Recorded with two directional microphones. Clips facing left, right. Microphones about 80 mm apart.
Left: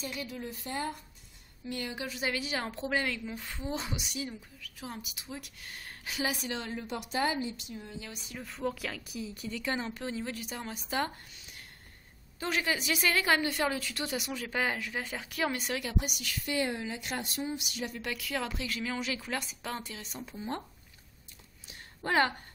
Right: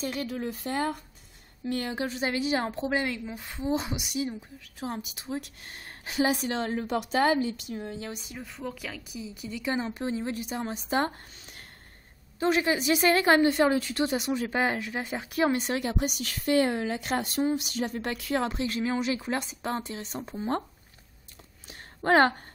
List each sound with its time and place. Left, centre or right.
0.0 s speech: right
1.7 s a woman's voice: right
8.4 s speech: centre; by 11.6 s right
12.4 s a woman's voice: right
21.6 s a sound: right